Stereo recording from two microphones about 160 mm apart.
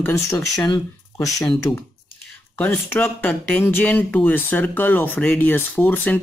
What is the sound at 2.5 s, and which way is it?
Speech, 10° left (ahead or behind).